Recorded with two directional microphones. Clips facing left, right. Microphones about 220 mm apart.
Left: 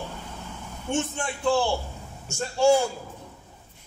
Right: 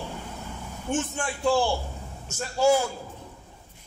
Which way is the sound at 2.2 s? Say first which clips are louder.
Left 1 dB; 30° left (ahead or behind).